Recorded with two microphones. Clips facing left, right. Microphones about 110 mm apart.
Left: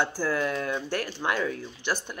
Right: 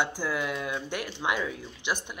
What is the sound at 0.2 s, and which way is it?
A man's voice, 15° right (ahead or behind).